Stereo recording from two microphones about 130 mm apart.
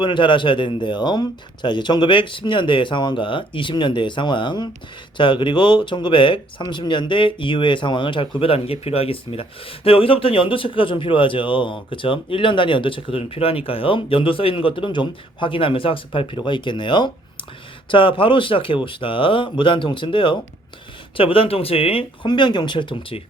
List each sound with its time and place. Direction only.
0.0 s speech: 40° left (ahead or behind)